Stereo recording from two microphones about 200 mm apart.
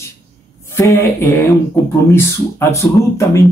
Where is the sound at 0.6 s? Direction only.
15° left (ahead or behind).